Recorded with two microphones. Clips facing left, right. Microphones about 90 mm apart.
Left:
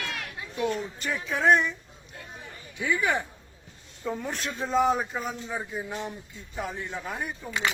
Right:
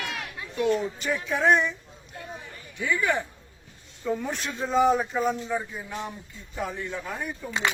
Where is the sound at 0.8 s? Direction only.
Centre (ahead or behind).